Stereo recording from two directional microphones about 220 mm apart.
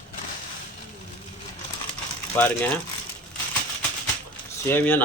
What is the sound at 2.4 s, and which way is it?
Speech, 10° left (ahead or behind).